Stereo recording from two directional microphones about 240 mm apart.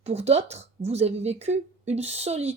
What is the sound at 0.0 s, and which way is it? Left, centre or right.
Speech, right.